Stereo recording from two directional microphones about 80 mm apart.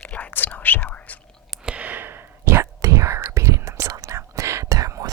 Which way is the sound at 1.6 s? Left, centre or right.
Centre.